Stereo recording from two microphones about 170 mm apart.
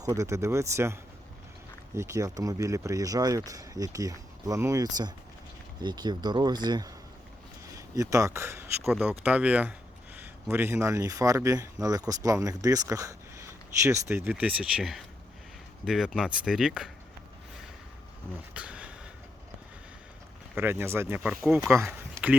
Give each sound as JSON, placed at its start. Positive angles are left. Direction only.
{"t": 0.0, "sound": "speech", "side_deg": -20}
{"t": 2.0, "sound": "speech", "side_deg": -15}
{"t": 18.5, "sound": "a sound", "side_deg": -5}
{"t": 20.6, "sound": "speech", "side_deg": -15}